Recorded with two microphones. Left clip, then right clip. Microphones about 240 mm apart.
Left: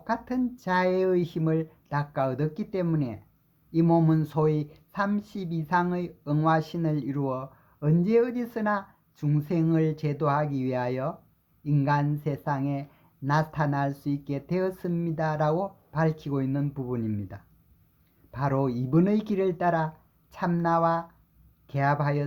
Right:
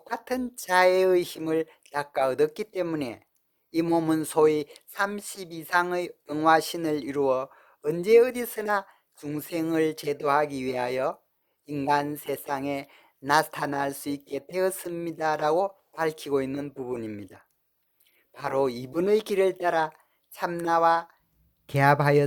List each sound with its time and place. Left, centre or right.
0.3 s speech: right
18.3 s speech: right